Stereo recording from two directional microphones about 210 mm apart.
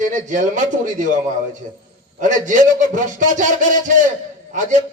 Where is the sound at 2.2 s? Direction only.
35° right (ahead or behind).